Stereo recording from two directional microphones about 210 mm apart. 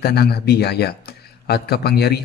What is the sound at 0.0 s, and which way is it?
Speech, 50° left (ahead or behind).